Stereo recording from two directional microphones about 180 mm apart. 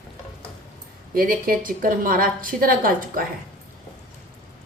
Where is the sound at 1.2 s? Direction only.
55° right (ahead or behind).